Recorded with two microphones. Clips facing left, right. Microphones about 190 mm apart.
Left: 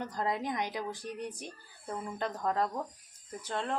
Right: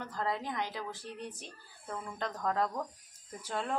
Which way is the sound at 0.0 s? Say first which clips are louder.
Left 2 dB; 15° left (ahead or behind).